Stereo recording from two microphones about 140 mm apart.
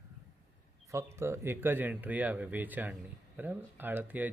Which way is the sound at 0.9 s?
20° right (ahead or behind).